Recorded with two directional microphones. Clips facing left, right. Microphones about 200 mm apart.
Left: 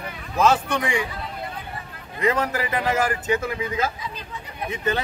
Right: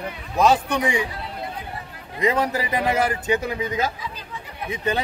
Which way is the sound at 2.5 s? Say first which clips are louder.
Right 1 dB; 15° right (ahead or behind).